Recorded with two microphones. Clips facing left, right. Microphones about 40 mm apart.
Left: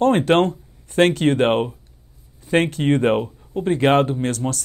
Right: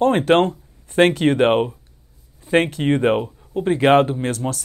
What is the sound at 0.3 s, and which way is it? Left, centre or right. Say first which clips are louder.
Speech: right 1 dB; centre.